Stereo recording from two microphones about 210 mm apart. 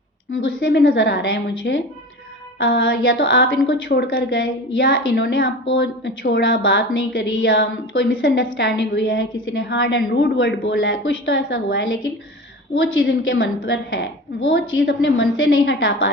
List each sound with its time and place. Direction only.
0.3 s a woman's voice: 70° left (ahead or behind)
8.4 s a woman's voice: 55° left (ahead or behind)